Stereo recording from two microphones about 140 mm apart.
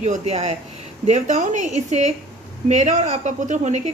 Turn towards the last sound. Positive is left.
turn(degrees=-60)  # may be behind; listen again after turning